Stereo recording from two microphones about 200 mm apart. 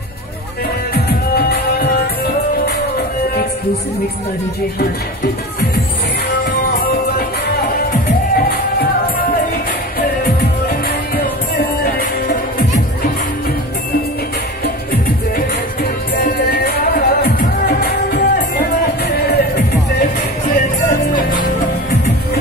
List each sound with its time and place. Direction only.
0.9 s music: 50° left (ahead or behind)
16.4 s music: 50° left (ahead or behind)